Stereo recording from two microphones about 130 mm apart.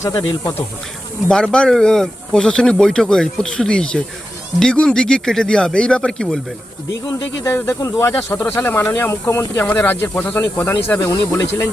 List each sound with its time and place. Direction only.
0.1 s speech: 25° left (ahead or behind)
1.3 s speech: 5° left (ahead or behind)
7.4 s speech: 20° left (ahead or behind)